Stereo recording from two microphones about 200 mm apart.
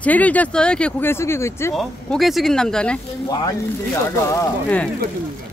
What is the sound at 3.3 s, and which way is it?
Speech, 20° left (ahead or behind).